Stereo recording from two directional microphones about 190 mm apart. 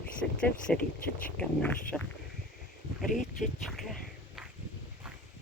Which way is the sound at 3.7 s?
Centre (ahead or behind).